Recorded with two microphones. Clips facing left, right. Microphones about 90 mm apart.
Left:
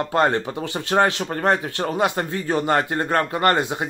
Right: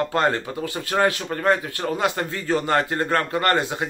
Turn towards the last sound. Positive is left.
turn(degrees=25)  # may be behind; listen again after turning